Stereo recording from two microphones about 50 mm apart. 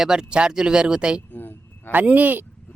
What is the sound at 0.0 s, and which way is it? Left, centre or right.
Speech, centre.